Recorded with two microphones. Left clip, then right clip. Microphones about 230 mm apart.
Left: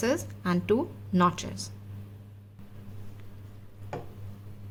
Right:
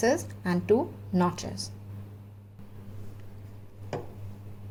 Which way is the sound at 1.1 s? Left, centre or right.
Left.